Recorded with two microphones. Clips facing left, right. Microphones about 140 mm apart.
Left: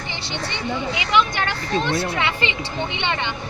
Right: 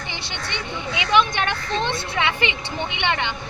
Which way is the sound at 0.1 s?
20° right (ahead or behind).